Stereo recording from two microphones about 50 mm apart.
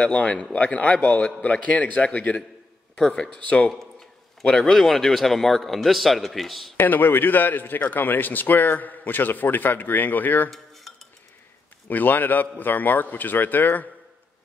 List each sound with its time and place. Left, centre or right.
0.0 s a man's voice: left
4.7 s a man's voice: centre
6.8 s a man's voice: left
11.9 s a man's voice: left